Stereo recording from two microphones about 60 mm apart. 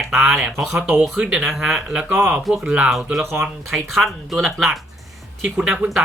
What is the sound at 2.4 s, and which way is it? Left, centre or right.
Speech, centre.